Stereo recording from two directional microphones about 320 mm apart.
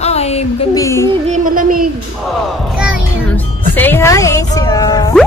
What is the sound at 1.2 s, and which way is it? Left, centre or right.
Music, right.